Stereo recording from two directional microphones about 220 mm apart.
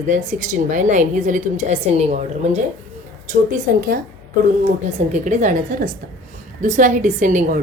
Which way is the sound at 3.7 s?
40° right (ahead or behind).